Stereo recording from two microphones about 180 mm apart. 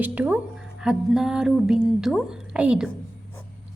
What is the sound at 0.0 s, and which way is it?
Speech, 10° right (ahead or behind).